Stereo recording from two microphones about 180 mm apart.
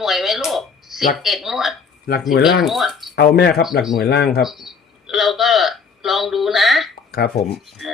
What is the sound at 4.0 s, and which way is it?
Speech, 65° left (ahead or behind).